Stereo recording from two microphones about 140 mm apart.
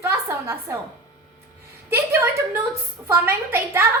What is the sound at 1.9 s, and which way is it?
A woman's voice, 20° right (ahead or behind).